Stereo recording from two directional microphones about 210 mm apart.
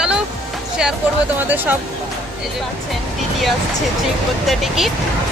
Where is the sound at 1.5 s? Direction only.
10° right (ahead or behind).